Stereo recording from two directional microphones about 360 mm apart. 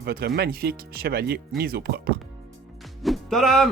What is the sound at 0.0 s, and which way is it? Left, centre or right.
Speech, right.